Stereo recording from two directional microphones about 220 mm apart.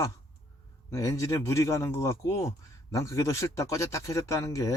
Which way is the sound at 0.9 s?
15° left (ahead or behind).